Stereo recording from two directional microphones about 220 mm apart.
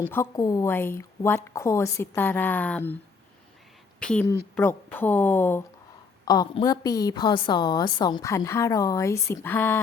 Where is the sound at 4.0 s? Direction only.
5° left (ahead or behind).